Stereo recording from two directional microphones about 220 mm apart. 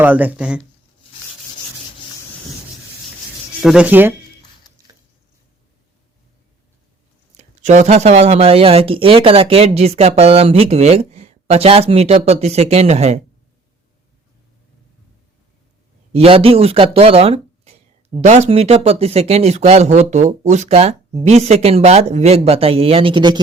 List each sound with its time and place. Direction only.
0.0 s speech: 5° right (ahead or behind)
3.6 s speech: 5° right (ahead or behind)
7.3 s speech: 35° right (ahead or behind)
16.1 s speech: 25° right (ahead or behind)